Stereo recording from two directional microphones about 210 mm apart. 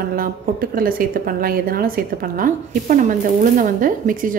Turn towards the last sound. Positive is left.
turn(degrees=-40)  # may be behind; listen again after turning